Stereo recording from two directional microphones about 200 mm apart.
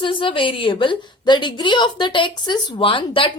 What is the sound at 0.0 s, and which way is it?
A woman's voice, 25° left (ahead or behind).